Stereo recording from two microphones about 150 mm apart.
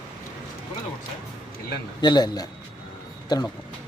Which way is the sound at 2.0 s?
30° left (ahead or behind).